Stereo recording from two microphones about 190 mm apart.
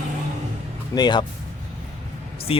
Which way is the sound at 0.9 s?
20° left (ahead or behind).